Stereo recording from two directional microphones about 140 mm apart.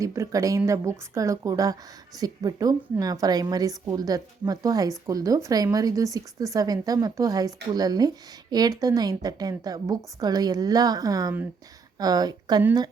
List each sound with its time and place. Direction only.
0.0 s speech: 25° right (ahead or behind)